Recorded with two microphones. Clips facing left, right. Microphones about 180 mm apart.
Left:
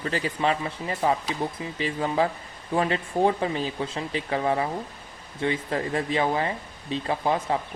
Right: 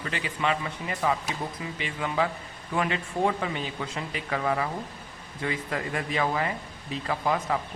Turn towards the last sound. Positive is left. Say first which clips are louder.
# left 2 dB
turn(degrees=30)  # may be behind; listen again after turning